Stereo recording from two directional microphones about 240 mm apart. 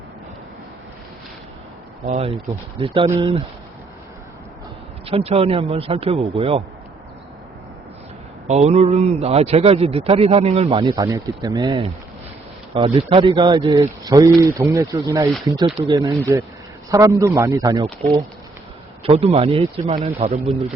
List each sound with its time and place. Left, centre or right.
2.0 s a man's voice: right
5.0 s a man's voice: right
8.4 s a man's voice: right
17.8 s a man's voice: right